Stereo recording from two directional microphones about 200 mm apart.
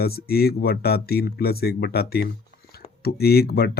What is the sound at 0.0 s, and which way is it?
Speech, 50° left (ahead or behind).